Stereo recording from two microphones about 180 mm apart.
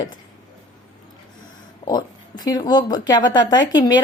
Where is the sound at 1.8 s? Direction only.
20° left (ahead or behind).